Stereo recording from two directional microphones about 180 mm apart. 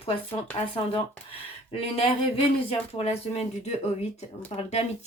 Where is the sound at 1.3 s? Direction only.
35° left (ahead or behind).